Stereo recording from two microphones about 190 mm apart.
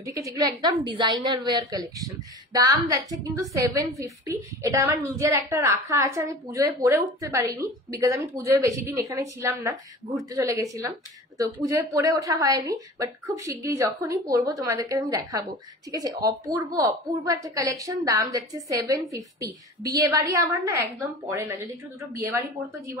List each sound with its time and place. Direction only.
0.0 s a woman's voice: 15° right (ahead or behind)